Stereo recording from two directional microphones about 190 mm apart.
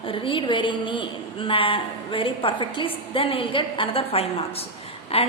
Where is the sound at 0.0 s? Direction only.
30° left (ahead or behind).